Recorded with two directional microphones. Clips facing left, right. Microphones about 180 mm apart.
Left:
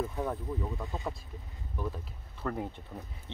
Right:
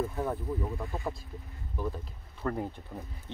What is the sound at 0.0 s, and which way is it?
Speech, 5° right (ahead or behind).